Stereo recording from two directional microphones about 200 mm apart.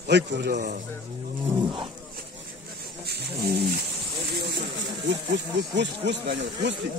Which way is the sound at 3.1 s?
55° right (ahead or behind).